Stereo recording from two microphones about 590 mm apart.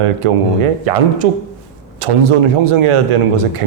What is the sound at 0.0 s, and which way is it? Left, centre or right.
Speech, right.